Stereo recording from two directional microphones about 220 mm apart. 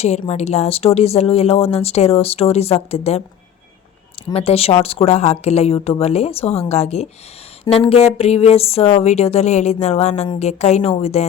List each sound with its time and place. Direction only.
0.3 s speech: 30° left (ahead or behind)
4.3 s speech: 25° left (ahead or behind)